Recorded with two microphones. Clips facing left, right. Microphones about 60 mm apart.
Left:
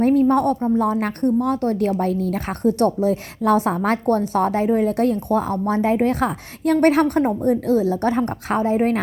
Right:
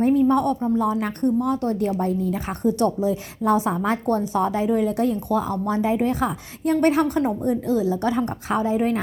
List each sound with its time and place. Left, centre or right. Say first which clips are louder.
0.0 s a woman's voice: left 2 dB; left